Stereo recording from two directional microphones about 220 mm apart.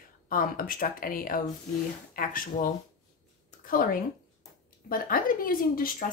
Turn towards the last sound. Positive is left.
turn(degrees=40)  # may be behind; listen again after turning